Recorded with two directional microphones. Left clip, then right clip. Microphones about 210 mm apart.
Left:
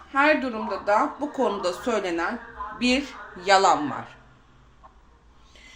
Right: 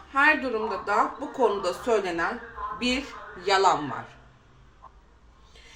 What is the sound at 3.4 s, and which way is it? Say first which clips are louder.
Speech: left 3 dB; 45° left (ahead or behind).